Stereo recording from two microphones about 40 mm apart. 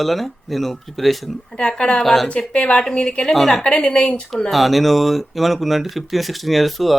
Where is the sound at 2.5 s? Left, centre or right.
Left.